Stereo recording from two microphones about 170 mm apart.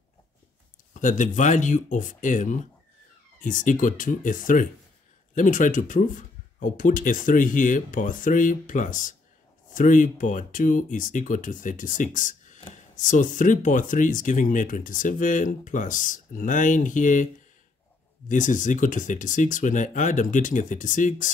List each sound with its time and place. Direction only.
0.9 s speech: 50° left (ahead or behind)
18.3 s speech: 50° left (ahead or behind)